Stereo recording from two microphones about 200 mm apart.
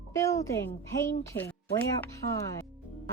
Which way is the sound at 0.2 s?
15° left (ahead or behind).